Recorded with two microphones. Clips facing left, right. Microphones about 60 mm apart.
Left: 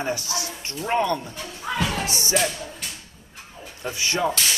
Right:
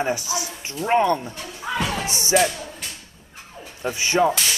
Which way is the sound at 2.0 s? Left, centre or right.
Right.